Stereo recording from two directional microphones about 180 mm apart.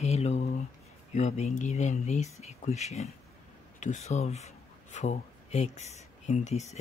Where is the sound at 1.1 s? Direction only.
40° left (ahead or behind).